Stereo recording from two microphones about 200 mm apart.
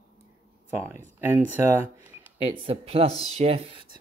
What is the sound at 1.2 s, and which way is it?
Speech, 10° right (ahead or behind).